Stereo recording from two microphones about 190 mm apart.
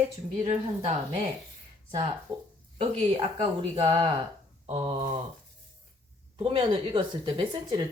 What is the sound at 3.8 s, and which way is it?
Speech, 20° right (ahead or behind).